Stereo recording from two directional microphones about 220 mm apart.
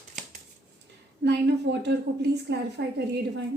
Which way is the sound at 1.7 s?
50° right (ahead or behind).